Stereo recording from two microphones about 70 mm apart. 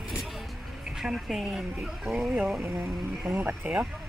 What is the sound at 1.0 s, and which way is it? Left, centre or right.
Speech, centre.